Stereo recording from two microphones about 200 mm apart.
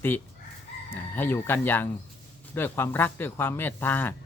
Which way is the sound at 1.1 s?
10° left (ahead or behind).